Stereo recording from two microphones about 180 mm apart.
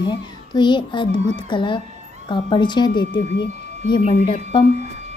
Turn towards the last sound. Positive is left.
turn(degrees=30)  # may be behind; listen again after turning